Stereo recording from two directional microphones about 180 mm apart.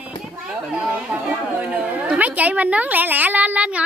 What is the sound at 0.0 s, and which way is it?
Speech, 5° right (ahead or behind).